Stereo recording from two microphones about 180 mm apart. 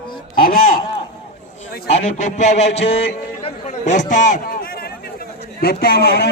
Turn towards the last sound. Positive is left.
turn(degrees=60)  # may be behind; listen again after turning